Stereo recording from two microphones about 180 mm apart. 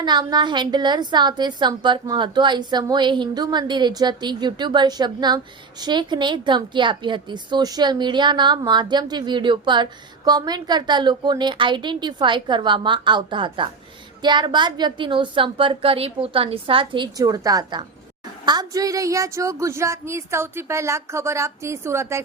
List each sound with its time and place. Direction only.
0.0 s a woman's voice: 25° right (ahead or behind)